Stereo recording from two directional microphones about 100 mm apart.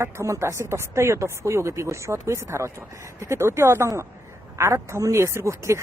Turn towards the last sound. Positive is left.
turn(degrees=-30)  # may be behind; listen again after turning